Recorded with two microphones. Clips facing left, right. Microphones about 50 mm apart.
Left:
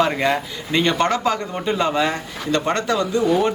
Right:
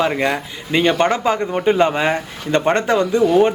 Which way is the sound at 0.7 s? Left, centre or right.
Centre.